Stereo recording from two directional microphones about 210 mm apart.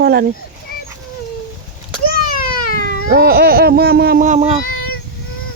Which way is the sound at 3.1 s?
50° right (ahead or behind).